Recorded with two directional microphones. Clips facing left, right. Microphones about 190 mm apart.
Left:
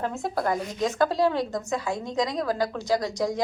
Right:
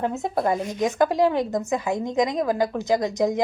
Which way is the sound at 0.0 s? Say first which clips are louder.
Right 3 dB; 20° right (ahead or behind).